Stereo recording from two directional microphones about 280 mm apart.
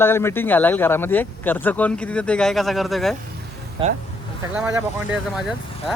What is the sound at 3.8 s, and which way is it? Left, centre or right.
Speech, centre.